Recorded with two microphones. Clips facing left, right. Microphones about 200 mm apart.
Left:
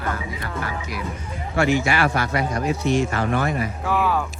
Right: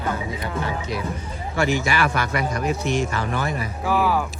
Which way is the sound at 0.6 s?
25° right (ahead or behind).